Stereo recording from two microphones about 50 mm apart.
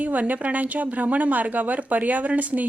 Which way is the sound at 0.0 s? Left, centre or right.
Right.